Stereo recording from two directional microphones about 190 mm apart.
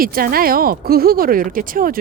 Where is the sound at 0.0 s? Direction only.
50° right (ahead or behind).